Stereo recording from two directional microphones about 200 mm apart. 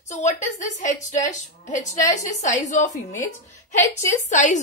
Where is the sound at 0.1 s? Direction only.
35° left (ahead or behind).